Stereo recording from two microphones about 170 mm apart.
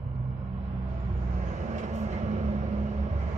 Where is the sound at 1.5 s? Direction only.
45° right (ahead or behind).